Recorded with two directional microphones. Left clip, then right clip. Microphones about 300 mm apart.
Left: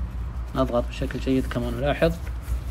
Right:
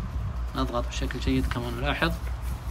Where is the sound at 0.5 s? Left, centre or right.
Centre.